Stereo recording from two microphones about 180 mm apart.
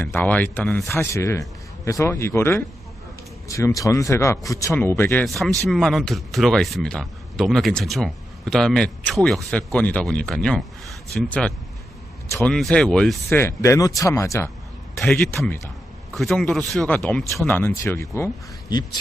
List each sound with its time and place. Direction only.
0.0 s a man's voice: 10° left (ahead or behind)
5.2 s a man's voice: centre (ahead or behind)
16.1 s a man's voice: centre (ahead or behind)